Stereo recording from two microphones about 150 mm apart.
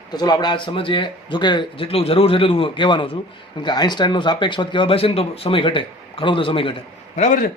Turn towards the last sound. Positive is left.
turn(degrees=60)  # may be behind; listen again after turning